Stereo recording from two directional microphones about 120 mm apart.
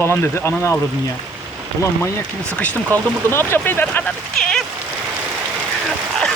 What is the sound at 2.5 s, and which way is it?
Speech, 10° left (ahead or behind).